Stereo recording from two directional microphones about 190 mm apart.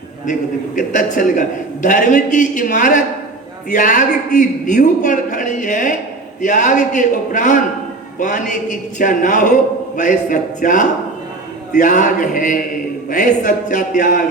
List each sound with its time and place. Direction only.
0.8 s a man's voice: 45° left (ahead or behind)